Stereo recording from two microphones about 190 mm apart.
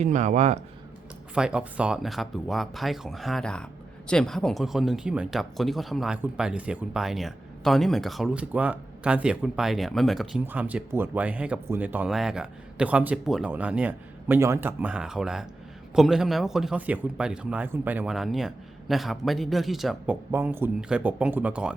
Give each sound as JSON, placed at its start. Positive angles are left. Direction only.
{"t": 0.0, "sound": "a man's voice", "side_deg": -40}
{"t": 1.4, "sound": "speech", "side_deg": -5}
{"t": 20.3, "sound": "speech", "side_deg": -10}